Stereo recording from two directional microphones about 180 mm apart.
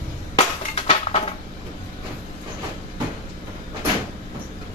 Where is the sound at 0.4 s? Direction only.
35° left (ahead or behind).